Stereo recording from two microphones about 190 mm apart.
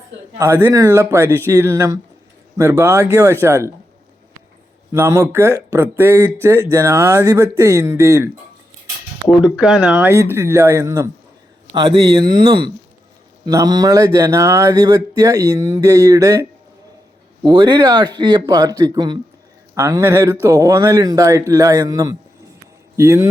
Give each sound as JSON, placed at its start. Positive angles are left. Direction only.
{"t": 0.3, "sound": "speech", "side_deg": -15}
{"t": 4.9, "sound": "speech", "side_deg": -15}
{"t": 9.4, "sound": "speech", "side_deg": -5}
{"t": 11.7, "sound": "speech", "side_deg": -25}